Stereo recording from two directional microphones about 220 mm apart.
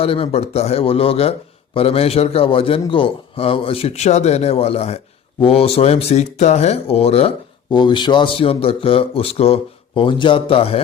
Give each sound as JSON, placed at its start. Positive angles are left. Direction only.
{"t": 0.0, "sound": "a man's voice", "side_deg": 25}